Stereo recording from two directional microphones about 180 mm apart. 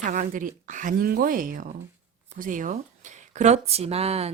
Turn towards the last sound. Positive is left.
turn(degrees=-35)  # may be behind; listen again after turning